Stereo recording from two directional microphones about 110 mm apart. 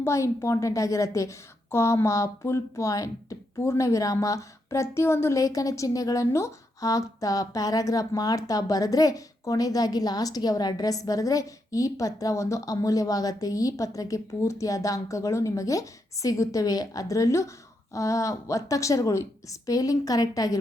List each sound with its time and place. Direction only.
0.0 s a woman's voice: 25° left (ahead or behind)